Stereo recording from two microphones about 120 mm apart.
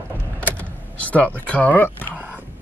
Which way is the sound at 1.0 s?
10° left (ahead or behind).